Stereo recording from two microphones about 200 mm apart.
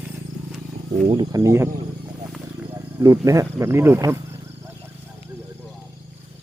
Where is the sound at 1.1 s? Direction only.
20° right (ahead or behind).